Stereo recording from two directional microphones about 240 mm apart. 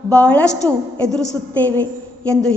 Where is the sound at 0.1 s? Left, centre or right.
Centre.